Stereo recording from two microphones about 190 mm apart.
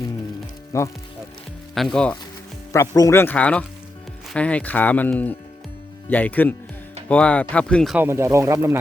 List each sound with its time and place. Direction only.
0.7 s speech: 15° left (ahead or behind)
1.7 s speech: centre (ahead or behind)
2.7 s speech: 15° left (ahead or behind)
7.9 s speech: 15° right (ahead or behind)